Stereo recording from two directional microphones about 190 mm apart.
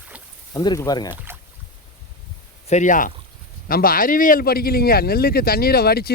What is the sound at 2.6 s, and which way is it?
Speech, 40° left (ahead or behind).